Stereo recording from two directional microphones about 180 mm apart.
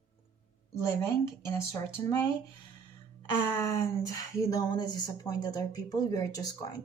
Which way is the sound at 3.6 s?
15° left (ahead or behind).